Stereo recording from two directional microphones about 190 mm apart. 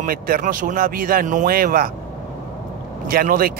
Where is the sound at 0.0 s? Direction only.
45° right (ahead or behind).